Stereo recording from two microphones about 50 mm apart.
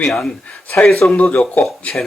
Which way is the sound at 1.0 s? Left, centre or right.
Left.